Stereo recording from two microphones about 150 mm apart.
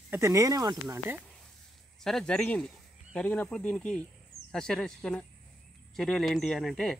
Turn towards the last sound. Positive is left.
turn(degrees=0)  # may be behind; listen again after turning